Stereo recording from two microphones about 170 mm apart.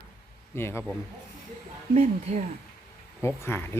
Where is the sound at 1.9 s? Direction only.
40° right (ahead or behind).